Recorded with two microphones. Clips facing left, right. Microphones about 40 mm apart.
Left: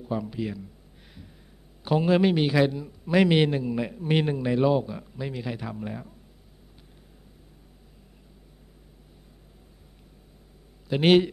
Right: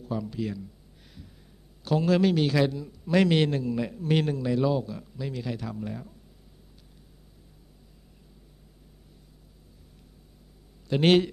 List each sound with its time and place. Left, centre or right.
0.0 s a man's voice: centre
1.9 s a man's voice: left
10.9 s a man's voice: centre